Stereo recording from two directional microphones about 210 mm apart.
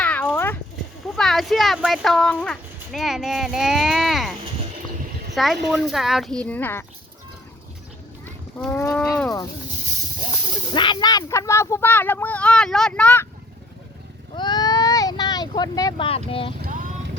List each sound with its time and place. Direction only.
0.0 s a sound: 5° left (ahead or behind)
1.1 s speech: centre (ahead or behind)
8.5 s speech: 10° left (ahead or behind)
10.7 s speech: 20° left (ahead or behind); by 13.2 s 5° left (ahead or behind)
14.3 s vehicle: 20° left (ahead or behind)
16.6 s vehicle: 40° right (ahead or behind)